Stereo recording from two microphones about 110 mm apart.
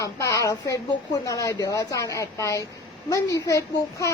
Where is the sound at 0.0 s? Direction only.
30° left (ahead or behind).